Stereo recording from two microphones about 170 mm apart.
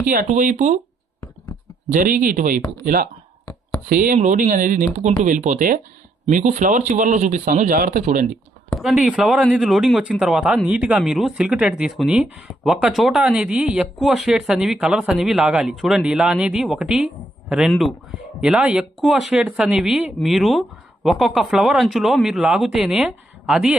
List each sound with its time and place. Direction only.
0.1 s speech: 50° right (ahead or behind)
1.9 s speech: 50° right (ahead or behind)
8.8 s speech: centre (ahead or behind)